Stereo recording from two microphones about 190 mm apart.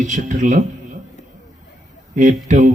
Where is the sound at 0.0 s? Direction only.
40° right (ahead or behind).